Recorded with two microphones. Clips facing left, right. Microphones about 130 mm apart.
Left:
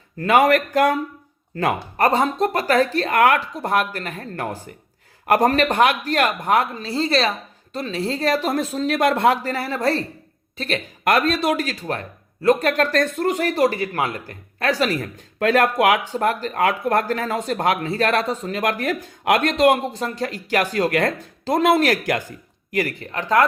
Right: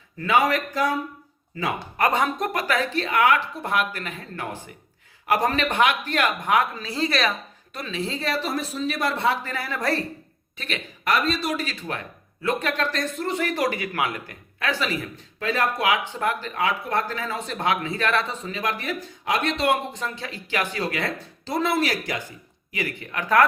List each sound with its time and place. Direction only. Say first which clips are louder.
0.2 s speech: left 5 dB; 50° left (ahead or behind)
2.0 s a man's voice: left 4 dB; 35° left (ahead or behind); by 3.4 s 50° left (ahead or behind)
3.6 s a man's voice: left 4 dB; 40° left (ahead or behind)
8.7 s speech: left 6 dB; 90° left
9.1 s speech: left 6 dB; 50° left (ahead or behind)
9.4 s a man's voice: left 6 dB; 35° left (ahead or behind)
11.1 s speech: left 5 dB; 55° left (ahead or behind)
16.1 s speech: left 5 dB; 40° left (ahead or behind)
19.2 s a man's voice: left 7 dB; 65° left (ahead or behind)
19.5 s speech: left 7 dB; 40° left (ahead or behind)